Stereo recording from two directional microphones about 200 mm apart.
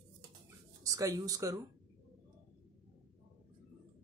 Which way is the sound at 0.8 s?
15° right (ahead or behind).